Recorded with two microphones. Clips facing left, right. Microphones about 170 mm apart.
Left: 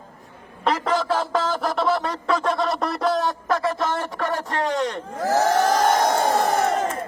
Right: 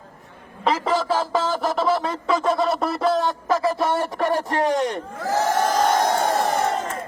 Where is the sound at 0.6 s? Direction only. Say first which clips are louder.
Right 1 dB; centre (ahead or behind).